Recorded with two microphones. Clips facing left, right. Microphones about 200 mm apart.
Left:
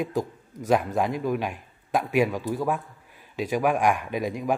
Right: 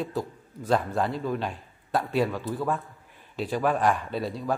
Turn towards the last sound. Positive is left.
turn(degrees=15)  # may be behind; listen again after turning